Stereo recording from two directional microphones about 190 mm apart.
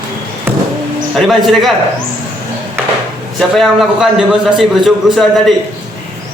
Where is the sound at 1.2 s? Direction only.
Centre (ahead or behind).